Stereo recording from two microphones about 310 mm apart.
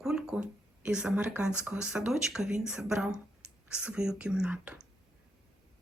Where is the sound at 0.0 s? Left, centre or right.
Centre.